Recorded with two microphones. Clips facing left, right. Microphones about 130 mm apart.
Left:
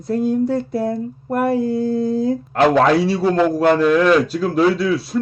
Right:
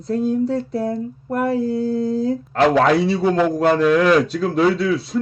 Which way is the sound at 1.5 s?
70° left (ahead or behind).